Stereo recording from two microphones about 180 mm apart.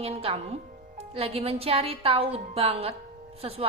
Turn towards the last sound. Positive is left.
turn(degrees=-35)  # may be behind; listen again after turning